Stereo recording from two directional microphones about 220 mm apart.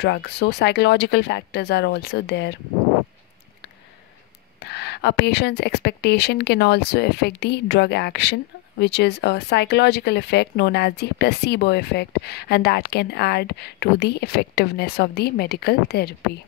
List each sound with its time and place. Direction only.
0.0 s speech: 50° left (ahead or behind)
4.6 s speech: 50° left (ahead or behind)